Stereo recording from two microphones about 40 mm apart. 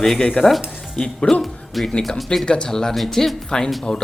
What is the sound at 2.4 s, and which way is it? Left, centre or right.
Speech, left.